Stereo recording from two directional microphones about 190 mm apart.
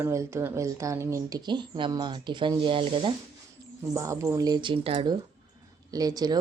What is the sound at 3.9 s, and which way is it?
A woman's voice, 15° right (ahead or behind).